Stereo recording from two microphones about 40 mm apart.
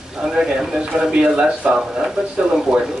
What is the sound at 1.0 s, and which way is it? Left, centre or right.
Speech, right.